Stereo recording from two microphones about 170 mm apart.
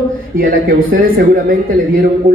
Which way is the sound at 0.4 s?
55° right (ahead or behind).